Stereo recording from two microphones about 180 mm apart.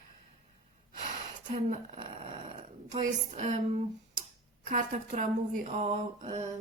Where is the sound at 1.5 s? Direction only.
35° right (ahead or behind).